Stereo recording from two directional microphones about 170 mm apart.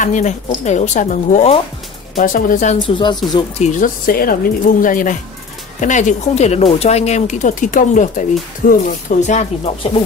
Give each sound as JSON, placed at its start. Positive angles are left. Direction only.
{"t": 0.0, "sound": "speech", "side_deg": 45}
{"t": 2.1, "sound": "speech", "side_deg": 55}
{"t": 2.9, "sound": "speech", "side_deg": 25}
{"t": 3.5, "sound": "speech", "side_deg": 45}